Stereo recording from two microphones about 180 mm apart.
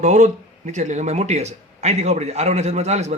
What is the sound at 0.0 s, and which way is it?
A man's voice, 40° right (ahead or behind).